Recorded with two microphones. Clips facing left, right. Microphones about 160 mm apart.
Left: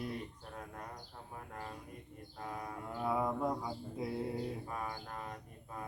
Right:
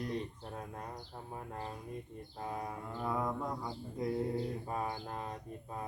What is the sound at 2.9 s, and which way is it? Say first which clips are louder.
Mantra: left 2 dB; 5° left (ahead or behind).